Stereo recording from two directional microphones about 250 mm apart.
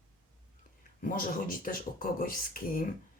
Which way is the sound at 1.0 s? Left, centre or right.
Left.